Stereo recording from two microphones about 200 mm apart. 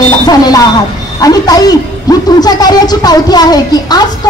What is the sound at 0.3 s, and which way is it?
A man's voice, 20° left (ahead or behind).